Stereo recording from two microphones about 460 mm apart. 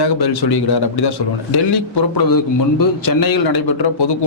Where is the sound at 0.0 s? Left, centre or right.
Left.